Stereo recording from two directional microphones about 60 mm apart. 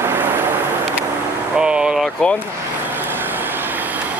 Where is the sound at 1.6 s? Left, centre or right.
Centre.